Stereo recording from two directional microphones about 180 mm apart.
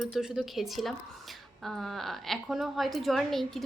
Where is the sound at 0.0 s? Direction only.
Centre (ahead or behind).